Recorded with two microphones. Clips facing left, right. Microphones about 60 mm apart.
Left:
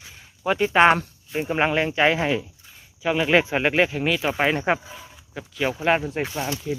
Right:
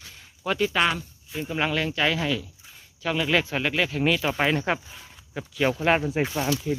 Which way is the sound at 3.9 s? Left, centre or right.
Centre.